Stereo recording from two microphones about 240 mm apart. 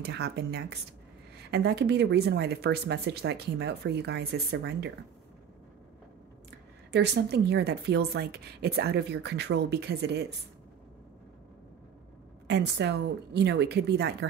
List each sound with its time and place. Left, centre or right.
0.0 s speech: right
6.9 s speech: right
12.4 s speech: right